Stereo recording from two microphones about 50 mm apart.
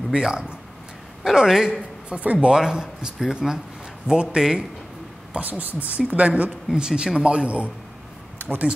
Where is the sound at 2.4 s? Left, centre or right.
Centre.